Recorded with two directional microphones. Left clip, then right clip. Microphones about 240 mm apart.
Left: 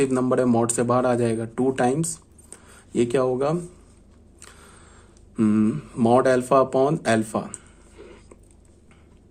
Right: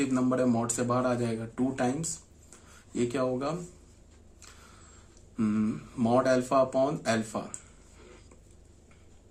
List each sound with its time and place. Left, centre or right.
0.0 s speech: left
2.5 s a sound: left
5.4 s speech: left